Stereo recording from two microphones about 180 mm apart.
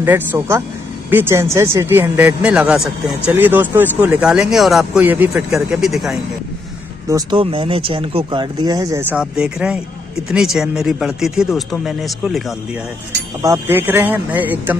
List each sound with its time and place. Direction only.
0.0 s speech: 10° right (ahead or behind)
7.1 s speech: 20° right (ahead or behind)
9.1 s speech: 5° right (ahead or behind)
13.4 s speech: 15° right (ahead or behind)